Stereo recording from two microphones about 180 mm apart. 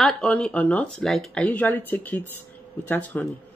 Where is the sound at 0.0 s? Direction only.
5° left (ahead or behind).